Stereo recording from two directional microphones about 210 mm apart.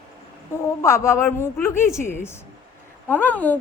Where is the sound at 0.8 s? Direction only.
15° left (ahead or behind).